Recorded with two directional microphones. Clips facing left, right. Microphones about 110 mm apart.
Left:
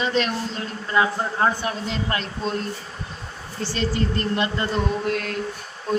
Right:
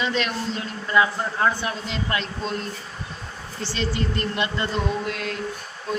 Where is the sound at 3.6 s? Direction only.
45° left (ahead or behind).